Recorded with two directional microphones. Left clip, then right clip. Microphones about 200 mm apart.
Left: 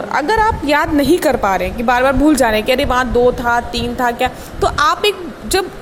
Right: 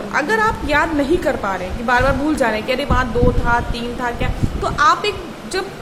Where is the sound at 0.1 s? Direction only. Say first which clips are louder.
Left 3 dB; 35° left (ahead or behind).